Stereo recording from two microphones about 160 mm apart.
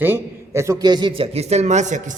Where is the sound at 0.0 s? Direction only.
15° right (ahead or behind).